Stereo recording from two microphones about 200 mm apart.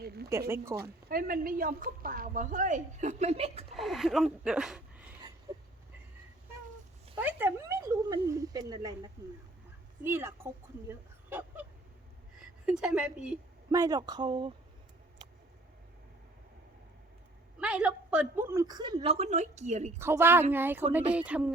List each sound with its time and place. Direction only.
0.0 s a sound: 50° right (ahead or behind)
0.3 s a woman's voice: 15° right (ahead or behind)
0.8 s a woman's voice: 50° right (ahead or behind); by 3.7 s 30° right (ahead or behind)
3.7 s speech: centre (ahead or behind)
7.2 s a woman's voice: 10° right (ahead or behind)
12.6 s speech: 5° right (ahead or behind)
13.7 s a woman's voice: 15° right (ahead or behind)
17.6 s a woman's voice: 5° right (ahead or behind); by 19.9 s 35° right (ahead or behind)
20.0 s a woman's voice: 10° right (ahead or behind)